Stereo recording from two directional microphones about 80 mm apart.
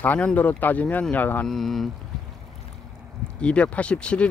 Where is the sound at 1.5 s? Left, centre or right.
Centre.